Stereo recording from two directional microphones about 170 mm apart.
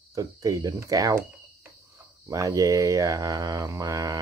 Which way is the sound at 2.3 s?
20° right (ahead or behind).